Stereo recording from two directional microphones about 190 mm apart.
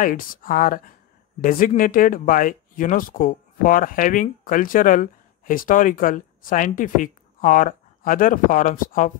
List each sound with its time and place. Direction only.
0.0 s speech: 45° left (ahead or behind)